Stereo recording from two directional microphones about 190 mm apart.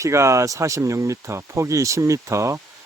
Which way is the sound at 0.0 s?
15° right (ahead or behind).